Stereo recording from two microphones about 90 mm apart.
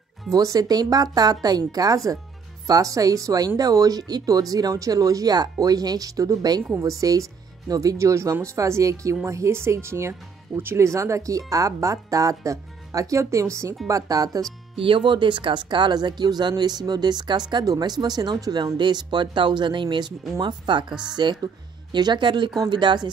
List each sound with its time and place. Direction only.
0.3 s speech: 40° right (ahead or behind)
14.8 s speech: 70° right (ahead or behind)